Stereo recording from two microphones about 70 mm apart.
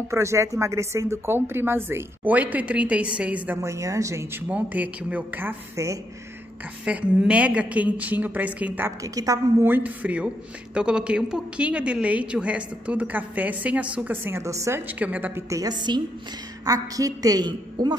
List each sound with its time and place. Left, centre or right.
0.1 s speech: right
2.2 s a woman's voice: right
3.6 s a woman's voice: right
4.5 s a woman's voice: right
6.8 s a woman's voice: centre
9.0 s a woman's voice: right
9.6 s a man's voice: right
14.1 s speech: right
14.4 s a woman's voice: right
14.9 s a woman's voice: right
15.5 s a woman's voice: right
16.6 s a woman's voice: right